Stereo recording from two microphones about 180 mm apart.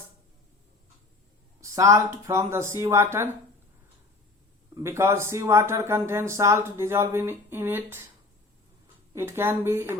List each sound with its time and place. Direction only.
1.6 s speech: 15° right (ahead or behind)
4.7 s speech: 15° right (ahead or behind)
9.1 s speech: 15° right (ahead or behind)